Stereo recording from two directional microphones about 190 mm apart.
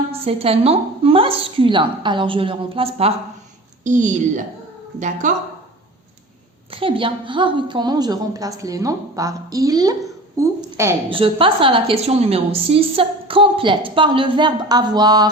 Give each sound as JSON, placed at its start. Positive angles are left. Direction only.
{"t": 0.1, "sound": "a woman's voice", "side_deg": -30}
{"t": 3.8, "sound": "a woman's voice", "side_deg": -40}
{"t": 6.7, "sound": "a woman's voice", "side_deg": -30}
{"t": 10.6, "sound": "a sound", "side_deg": -15}
{"t": 11.1, "sound": "a woman's voice", "side_deg": -30}